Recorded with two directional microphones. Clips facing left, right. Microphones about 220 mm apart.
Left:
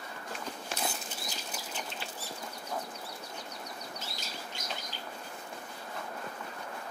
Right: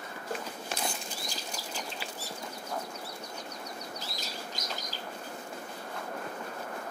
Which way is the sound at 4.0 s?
40° right (ahead or behind).